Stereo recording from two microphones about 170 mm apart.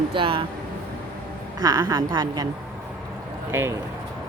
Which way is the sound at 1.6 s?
20° right (ahead or behind).